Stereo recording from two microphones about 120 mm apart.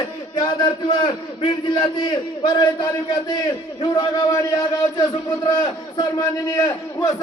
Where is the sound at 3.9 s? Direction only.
35° left (ahead or behind).